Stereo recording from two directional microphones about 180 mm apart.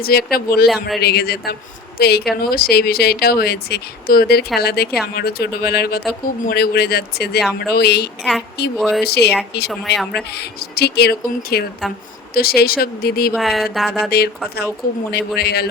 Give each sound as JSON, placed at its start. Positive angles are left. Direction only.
{"t": 0.0, "sound": "speech", "side_deg": 60}
{"t": 8.2, "sound": "speech", "side_deg": -5}
{"t": 9.0, "sound": "speech", "side_deg": 65}
{"t": 9.6, "sound": "speech", "side_deg": 0}
{"t": 10.3, "sound": "speech", "side_deg": 65}
{"t": 13.3, "sound": "speech", "side_deg": 0}
{"t": 15.4, "sound": "speech", "side_deg": 65}